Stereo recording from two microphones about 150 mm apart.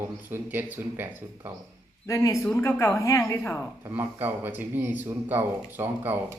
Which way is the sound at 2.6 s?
20° left (ahead or behind).